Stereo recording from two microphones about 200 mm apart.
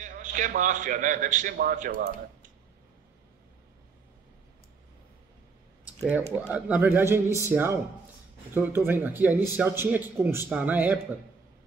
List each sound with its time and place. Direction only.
0.0 s a man's voice: 40° right (ahead or behind)
6.0 s speech: 5° right (ahead or behind)